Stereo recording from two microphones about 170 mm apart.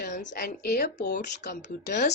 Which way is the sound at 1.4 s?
85° left.